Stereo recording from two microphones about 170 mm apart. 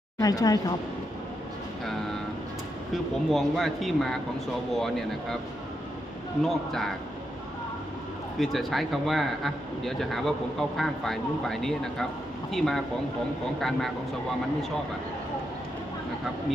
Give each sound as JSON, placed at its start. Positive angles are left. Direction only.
{"t": 0.2, "sound": "speech", "side_deg": 20}
{"t": 2.9, "sound": "speech", "side_deg": 0}
{"t": 6.4, "sound": "speech", "side_deg": 0}
{"t": 8.4, "sound": "speech", "side_deg": 0}